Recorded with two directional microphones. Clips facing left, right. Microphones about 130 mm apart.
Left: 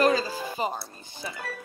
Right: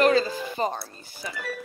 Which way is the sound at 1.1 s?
25° left (ahead or behind).